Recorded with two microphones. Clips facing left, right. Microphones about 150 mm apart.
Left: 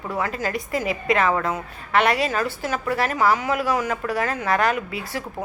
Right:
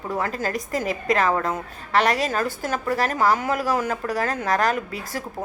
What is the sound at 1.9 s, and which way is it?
A woman's voice, 40° right (ahead or behind).